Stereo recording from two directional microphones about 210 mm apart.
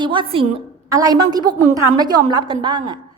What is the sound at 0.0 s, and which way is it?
A woman's voice, 20° right (ahead or behind).